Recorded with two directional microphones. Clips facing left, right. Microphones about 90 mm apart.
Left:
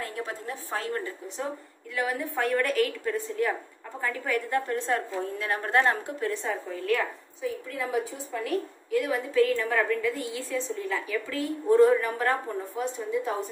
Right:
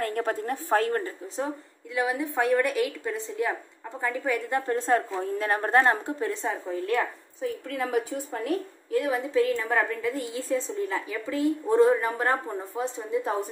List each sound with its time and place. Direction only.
0.0 s a woman's voice: 50° right (ahead or behind)
2.0 s a woman's voice: 20° right (ahead or behind)
4.7 s a woman's voice: 35° right (ahead or behind)
7.4 s a woman's voice: 55° right (ahead or behind)
8.5 s a woman's voice: 30° right (ahead or behind)